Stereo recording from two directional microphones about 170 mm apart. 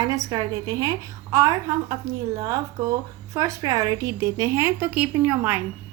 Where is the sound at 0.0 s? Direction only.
25° right (ahead or behind).